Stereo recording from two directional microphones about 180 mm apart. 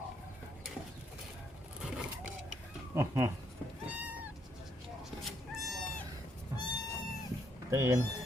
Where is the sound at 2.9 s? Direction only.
15° right (ahead or behind).